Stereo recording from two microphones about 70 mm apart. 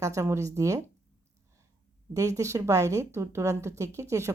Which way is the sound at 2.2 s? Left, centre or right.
Right.